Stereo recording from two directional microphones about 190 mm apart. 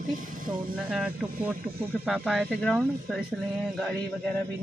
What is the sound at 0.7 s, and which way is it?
Speech, 5° right (ahead or behind).